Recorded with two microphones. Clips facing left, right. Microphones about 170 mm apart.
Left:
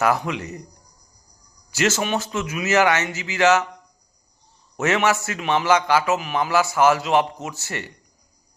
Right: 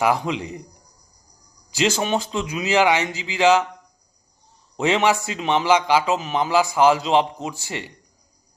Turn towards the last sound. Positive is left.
turn(degrees=-15)  # may be behind; listen again after turning